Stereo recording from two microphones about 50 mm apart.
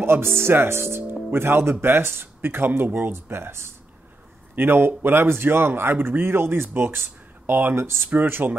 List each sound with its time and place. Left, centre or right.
0.0 s speech: right
3.1 s speech: right
7.7 s speech: right
8.1 s speech: right